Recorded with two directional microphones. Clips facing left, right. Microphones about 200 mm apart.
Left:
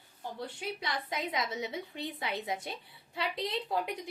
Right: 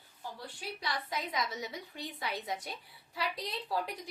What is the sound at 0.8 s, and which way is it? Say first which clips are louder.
A woman's voice: even; 25° left (ahead or behind).